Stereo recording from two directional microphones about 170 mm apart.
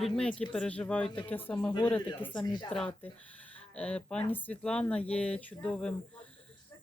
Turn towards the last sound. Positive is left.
turn(degrees=5)  # may be behind; listen again after turning